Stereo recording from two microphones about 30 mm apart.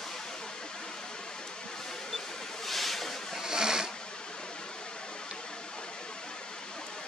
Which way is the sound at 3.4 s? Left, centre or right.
Right.